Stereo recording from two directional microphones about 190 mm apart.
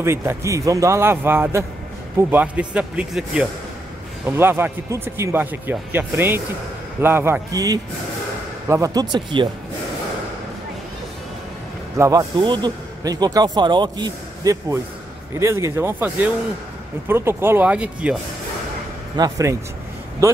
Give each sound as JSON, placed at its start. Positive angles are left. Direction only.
{"t": 0.0, "sound": "speech", "side_deg": -15}
{"t": 12.0, "sound": "speech", "side_deg": -20}
{"t": 19.1, "sound": "speech", "side_deg": -20}